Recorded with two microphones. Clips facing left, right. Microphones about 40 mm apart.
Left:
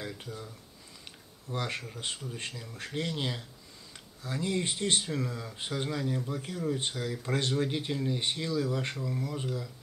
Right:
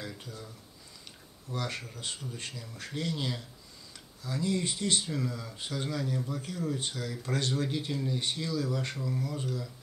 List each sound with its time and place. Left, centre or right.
0.2 s speech: centre
1.5 s speech: left
8.9 s speech: centre
9.2 s speech: left